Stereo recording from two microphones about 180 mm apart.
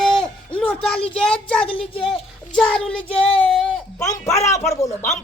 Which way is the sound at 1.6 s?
30° left (ahead or behind).